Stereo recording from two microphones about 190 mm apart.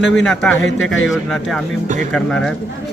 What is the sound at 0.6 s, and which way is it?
Speech, 85° left.